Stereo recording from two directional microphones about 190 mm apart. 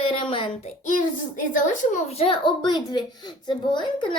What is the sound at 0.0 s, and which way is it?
Child singing, 30° left (ahead or behind).